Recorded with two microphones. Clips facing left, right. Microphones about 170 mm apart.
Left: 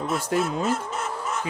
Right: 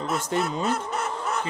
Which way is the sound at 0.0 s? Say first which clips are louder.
Left 1 dB; centre (ahead or behind).